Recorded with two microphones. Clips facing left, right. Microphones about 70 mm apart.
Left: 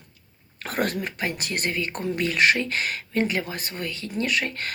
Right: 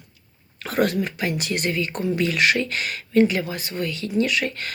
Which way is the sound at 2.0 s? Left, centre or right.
Left.